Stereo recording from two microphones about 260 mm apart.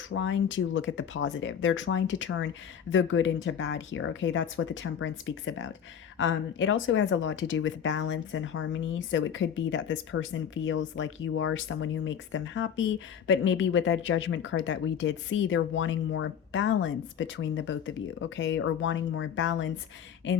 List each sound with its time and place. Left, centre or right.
0.1 s speech: left